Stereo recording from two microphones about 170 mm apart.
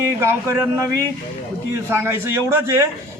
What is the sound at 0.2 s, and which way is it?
Speech, 15° right (ahead or behind).